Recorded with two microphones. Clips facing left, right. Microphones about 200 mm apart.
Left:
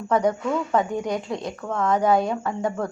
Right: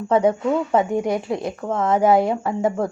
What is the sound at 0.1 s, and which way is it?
Speech, 25° right (ahead or behind).